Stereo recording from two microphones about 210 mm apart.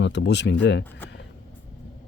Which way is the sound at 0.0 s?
55° left (ahead or behind).